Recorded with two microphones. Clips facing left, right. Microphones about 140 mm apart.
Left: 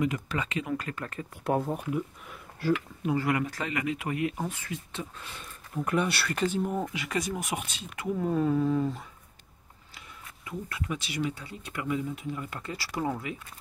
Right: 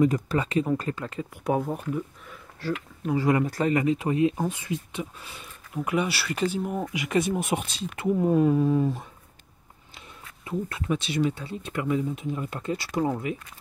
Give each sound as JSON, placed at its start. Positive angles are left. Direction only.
{"t": 0.0, "sound": "speech", "side_deg": -40}
{"t": 0.9, "sound": "speech", "side_deg": -20}
{"t": 1.4, "sound": "speech", "side_deg": -5}
{"t": 3.2, "sound": "speech", "side_deg": -25}
{"t": 3.4, "sound": "speech", "side_deg": -35}
{"t": 7.2, "sound": "speech", "side_deg": -25}
{"t": 9.9, "sound": "speech", "side_deg": -25}